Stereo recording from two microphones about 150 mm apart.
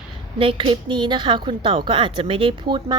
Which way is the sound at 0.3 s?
35° right (ahead or behind).